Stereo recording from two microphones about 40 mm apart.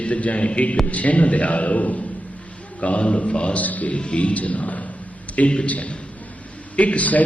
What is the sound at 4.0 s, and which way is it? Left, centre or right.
A man's voice, left.